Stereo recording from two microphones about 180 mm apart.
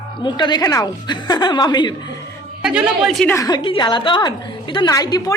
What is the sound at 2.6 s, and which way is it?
Speech, 5° right (ahead or behind).